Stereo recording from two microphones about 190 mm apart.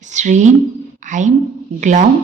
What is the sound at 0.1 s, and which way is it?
A woman's voice, 40° right (ahead or behind).